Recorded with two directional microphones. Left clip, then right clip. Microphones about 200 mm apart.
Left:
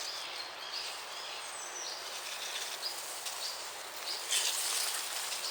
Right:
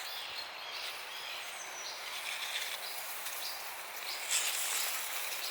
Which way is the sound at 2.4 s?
40° left (ahead or behind).